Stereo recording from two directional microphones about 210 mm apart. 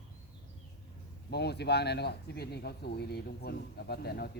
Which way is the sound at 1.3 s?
50° left (ahead or behind).